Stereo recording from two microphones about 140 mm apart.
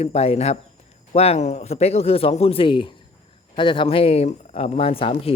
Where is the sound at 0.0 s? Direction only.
50° left (ahead or behind).